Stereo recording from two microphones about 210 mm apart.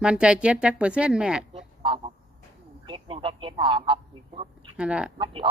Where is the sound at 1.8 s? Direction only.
25° right (ahead or behind).